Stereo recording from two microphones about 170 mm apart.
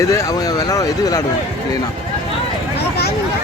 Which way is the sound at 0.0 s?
20° left (ahead or behind).